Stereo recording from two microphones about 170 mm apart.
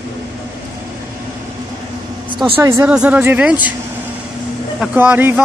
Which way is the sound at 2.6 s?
15° right (ahead or behind).